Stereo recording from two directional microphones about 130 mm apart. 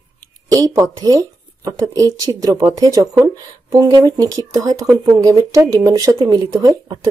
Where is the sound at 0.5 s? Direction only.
25° right (ahead or behind).